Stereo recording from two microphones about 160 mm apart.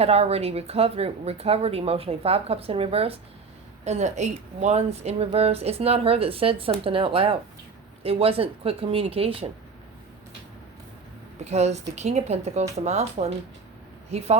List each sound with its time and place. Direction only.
0.0 s a woman's voice: 40° right (ahead or behind)
11.4 s a woman's voice: 45° right (ahead or behind)